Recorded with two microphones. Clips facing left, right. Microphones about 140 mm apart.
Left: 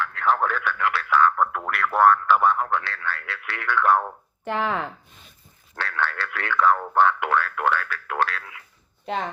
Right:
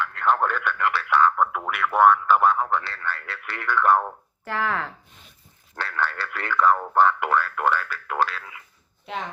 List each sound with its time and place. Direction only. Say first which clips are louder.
0.0 s speech: even; centre (ahead or behind)
4.4 s speech: left 1 dB; 20° left (ahead or behind)
5.7 s speech: even; centre (ahead or behind)